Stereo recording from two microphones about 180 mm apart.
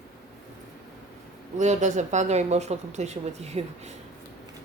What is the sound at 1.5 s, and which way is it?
A woman's voice, 40° right (ahead or behind).